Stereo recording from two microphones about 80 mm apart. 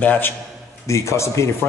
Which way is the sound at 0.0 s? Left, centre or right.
Left.